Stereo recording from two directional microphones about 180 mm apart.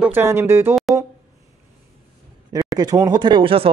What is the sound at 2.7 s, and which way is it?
Speech, 20° right (ahead or behind).